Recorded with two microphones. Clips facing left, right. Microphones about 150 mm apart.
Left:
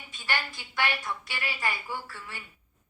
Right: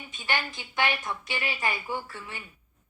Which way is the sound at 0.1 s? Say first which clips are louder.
Right 2 dB; 20° right (ahead or behind).